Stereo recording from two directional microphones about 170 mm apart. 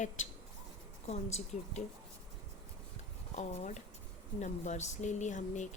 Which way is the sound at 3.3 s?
45° left (ahead or behind).